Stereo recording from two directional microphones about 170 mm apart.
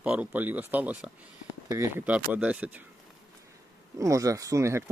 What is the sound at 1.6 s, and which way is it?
Speech, 15° right (ahead or behind).